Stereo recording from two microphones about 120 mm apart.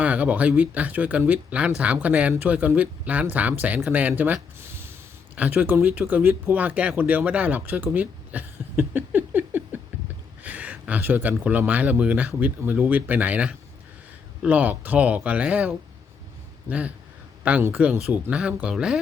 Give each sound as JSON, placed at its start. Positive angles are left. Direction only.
{"t": 0.0, "sound": "speech", "side_deg": -10}